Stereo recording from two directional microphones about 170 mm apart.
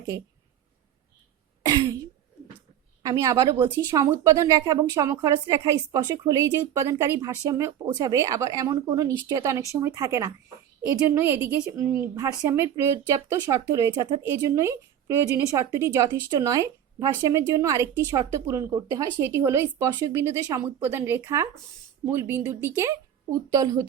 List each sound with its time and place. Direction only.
1.6 s throat clearing: 25° right (ahead or behind)
3.0 s a woman's voice: 20° right (ahead or behind)